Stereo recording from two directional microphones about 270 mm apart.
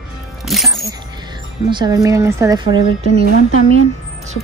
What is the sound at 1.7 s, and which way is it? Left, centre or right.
A woman's voice, centre.